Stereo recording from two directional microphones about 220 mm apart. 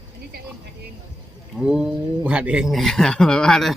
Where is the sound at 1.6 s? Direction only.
5° right (ahead or behind).